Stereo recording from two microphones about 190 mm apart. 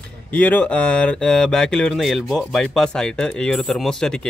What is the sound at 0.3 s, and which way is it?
Speech, 5° left (ahead or behind).